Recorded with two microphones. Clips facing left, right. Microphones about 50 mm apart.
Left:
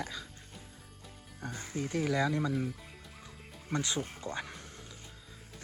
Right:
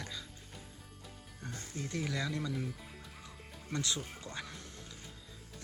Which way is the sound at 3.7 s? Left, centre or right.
Left.